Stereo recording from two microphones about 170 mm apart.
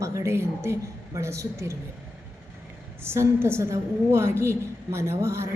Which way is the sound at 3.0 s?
15° right (ahead or behind).